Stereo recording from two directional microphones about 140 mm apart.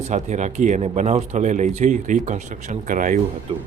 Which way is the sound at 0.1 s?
55° right (ahead or behind).